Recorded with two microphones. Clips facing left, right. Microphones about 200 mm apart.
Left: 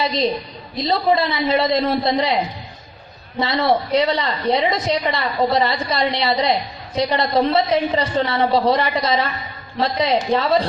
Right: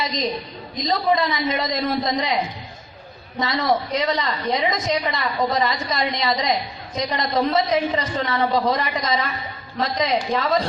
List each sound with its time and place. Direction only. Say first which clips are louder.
0.0 s a woman's voice: left 5 dB; 30° left (ahead or behind)
3.4 s a woman's voice: left 3 dB; 30° left (ahead or behind)